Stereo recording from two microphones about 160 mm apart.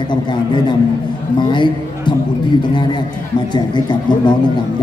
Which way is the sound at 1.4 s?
30° left (ahead or behind).